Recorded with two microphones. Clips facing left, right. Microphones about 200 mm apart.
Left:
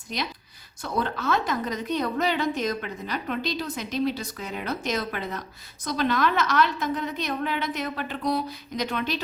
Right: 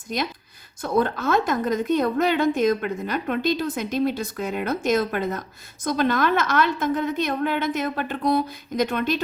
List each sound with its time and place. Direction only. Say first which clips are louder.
0.1 s a woman's voice: right 5 dB; 50° right (ahead or behind)